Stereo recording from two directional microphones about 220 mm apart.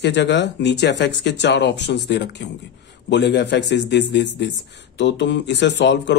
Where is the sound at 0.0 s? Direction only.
50° left (ahead or behind).